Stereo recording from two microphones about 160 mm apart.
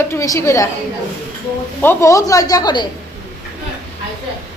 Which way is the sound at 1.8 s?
15° left (ahead or behind).